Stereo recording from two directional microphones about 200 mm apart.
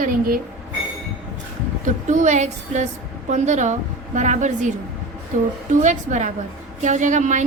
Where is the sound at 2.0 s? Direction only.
35° right (ahead or behind).